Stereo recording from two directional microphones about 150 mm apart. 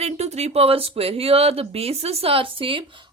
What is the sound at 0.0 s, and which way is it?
Speech, 45° right (ahead or behind).